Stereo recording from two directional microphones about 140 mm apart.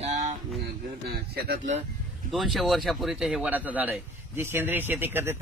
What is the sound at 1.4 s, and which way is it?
Speech, 65° right (ahead or behind).